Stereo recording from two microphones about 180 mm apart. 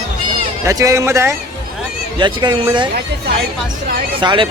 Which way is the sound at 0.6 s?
20° right (ahead or behind).